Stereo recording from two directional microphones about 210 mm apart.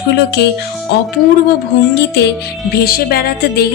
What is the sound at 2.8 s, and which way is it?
Speech, 45° left (ahead or behind).